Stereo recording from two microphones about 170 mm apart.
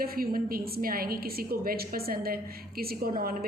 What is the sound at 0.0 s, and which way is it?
A woman's voice, 60° right (ahead or behind).